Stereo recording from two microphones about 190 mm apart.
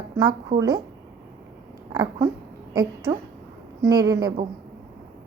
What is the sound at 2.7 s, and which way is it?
A woman's voice, 20° right (ahead or behind).